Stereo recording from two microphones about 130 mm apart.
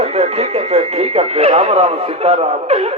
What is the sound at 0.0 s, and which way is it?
A man's voice, 55° right (ahead or behind).